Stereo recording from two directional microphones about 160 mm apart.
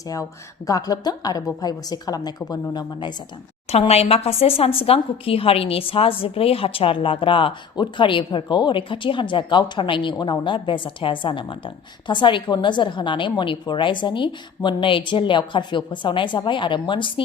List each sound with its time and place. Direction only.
0.7 s a woman's voice: 25° left (ahead or behind)
3.7 s a woman's voice: 40° left (ahead or behind)